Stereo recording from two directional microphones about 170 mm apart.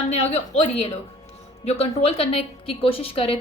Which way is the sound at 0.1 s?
40° left (ahead or behind).